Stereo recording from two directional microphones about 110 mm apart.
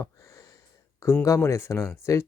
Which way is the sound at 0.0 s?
25° left (ahead or behind).